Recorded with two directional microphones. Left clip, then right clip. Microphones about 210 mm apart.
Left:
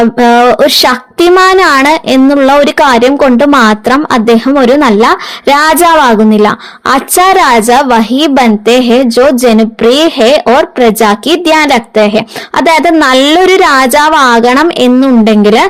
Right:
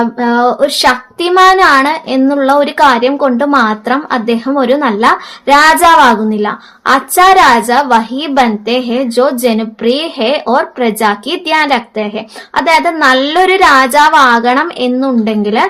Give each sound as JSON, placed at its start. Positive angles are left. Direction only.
{"t": 0.2, "sound": "a woman's voice", "side_deg": 40}